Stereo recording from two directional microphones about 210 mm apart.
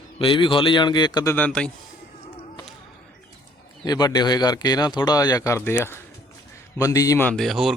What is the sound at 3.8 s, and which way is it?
A man's voice, 20° left (ahead or behind).